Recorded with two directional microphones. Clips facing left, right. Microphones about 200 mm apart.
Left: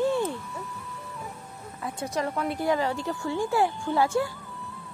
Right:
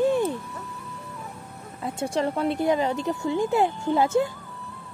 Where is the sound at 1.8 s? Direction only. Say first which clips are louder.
Right 4 dB; 30° right (ahead or behind).